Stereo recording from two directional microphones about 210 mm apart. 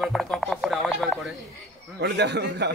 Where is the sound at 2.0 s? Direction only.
55° right (ahead or behind).